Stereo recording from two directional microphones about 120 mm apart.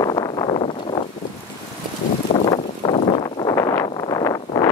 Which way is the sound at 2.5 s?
45° left (ahead or behind).